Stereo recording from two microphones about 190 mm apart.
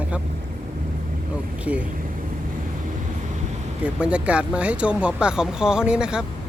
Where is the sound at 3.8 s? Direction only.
5° right (ahead or behind).